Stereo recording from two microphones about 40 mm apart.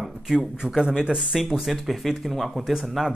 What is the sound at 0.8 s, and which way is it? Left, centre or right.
Speech, right.